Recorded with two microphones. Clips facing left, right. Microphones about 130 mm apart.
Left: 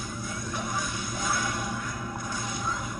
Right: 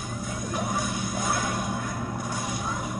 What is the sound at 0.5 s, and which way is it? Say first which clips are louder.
Music: right 5 dB; 50° right (ahead or behind).